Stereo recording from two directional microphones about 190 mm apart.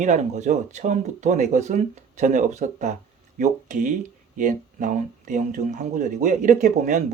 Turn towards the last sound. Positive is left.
turn(degrees=-40)  # may be behind; listen again after turning